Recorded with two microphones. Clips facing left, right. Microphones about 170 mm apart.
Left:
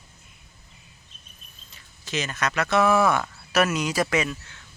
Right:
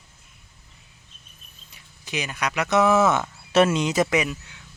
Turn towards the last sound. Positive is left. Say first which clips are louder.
# right 2 dB
turn(degrees=-15)  # may be behind; listen again after turning